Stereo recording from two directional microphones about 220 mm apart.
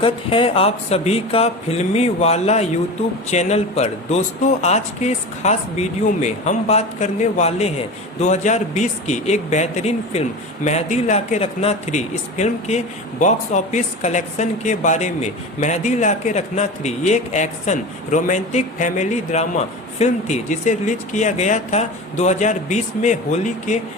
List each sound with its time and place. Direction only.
0.0 s speech: 25° left (ahead or behind)